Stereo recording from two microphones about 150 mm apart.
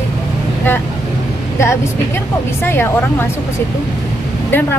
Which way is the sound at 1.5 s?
20° left (ahead or behind).